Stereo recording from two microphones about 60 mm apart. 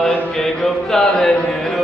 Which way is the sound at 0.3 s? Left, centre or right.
Centre.